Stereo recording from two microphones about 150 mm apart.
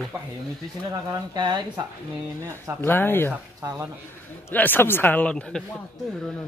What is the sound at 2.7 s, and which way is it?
Speech, 15° left (ahead or behind).